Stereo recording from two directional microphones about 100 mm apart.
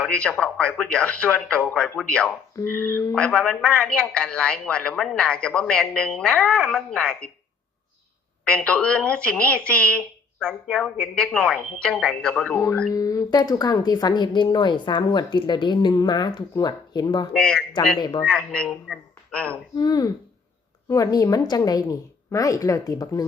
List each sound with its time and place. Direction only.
0.0 s speech: 10° left (ahead or behind)
2.6 s a sound: 25° left (ahead or behind)
3.2 s speech: 10° left (ahead or behind)
8.4 s speech: 10° left (ahead or behind)
12.9 s speech: 35° left (ahead or behind)
18.2 s speech: 10° left (ahead or behind)
19.7 s a woman's voice: 40° left (ahead or behind)